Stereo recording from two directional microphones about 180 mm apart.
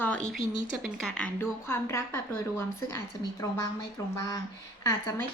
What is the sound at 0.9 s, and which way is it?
Speech, 5° left (ahead or behind).